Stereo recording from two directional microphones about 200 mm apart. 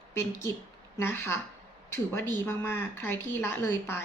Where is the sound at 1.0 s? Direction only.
10° left (ahead or behind).